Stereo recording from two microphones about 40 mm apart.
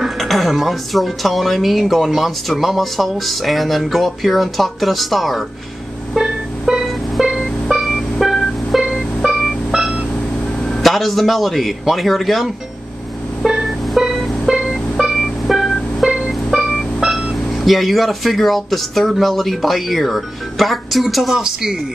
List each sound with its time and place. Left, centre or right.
0.2 s speech: centre
6.2 s music: centre
8.8 s music: centre
10.8 s speech: centre
13.5 s music: centre
14.5 s music: centre
16.0 s music: centre
17.6 s speech: centre
21.4 s speech: centre